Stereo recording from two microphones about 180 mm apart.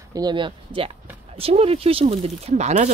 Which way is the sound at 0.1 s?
25° right (ahead or behind).